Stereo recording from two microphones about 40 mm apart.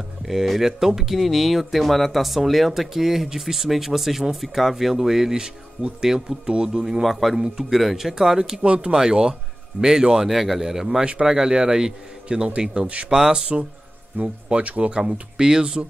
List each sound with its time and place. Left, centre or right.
0.3 s a man's voice: centre
6.8 s speech: centre
7.3 s a man's voice: centre
7.7 s a man's voice: centre
8.6 s speech: right
8.9 s a man's voice: centre
14.1 s speech: right; by 15.8 s centre